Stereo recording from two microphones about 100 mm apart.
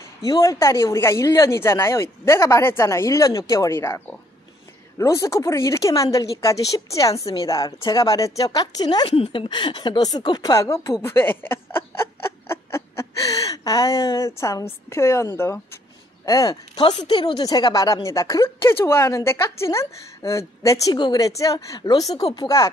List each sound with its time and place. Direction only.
0.2 s speech: 35° left (ahead or behind)
9.1 s speech: 70° left (ahead or behind)
9.5 s speech: 50° left (ahead or behind); by 15.8 s 25° left (ahead or behind)
16.3 s speech: 35° left (ahead or behind)
21.7 s speech: 45° left (ahead or behind)